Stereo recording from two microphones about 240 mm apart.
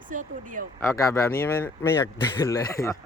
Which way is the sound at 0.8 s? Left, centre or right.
Centre.